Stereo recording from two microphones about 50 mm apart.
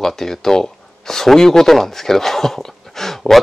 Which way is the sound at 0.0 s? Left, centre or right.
Centre.